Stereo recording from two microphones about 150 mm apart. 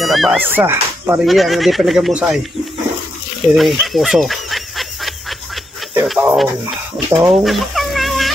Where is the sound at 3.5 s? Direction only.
Centre (ahead or behind).